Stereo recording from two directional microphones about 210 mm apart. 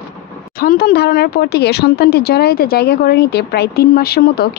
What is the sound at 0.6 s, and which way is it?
Speech, 45° left (ahead or behind).